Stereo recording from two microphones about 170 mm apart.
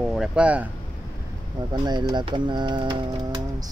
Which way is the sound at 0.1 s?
5° right (ahead or behind).